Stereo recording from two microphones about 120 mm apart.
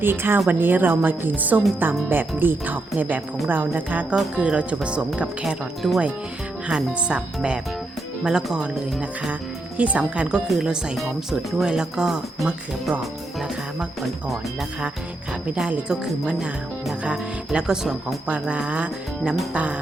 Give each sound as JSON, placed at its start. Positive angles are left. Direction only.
{"t": 0.0, "sound": "speech", "side_deg": -20}
{"t": 15.4, "sound": "speech", "side_deg": -10}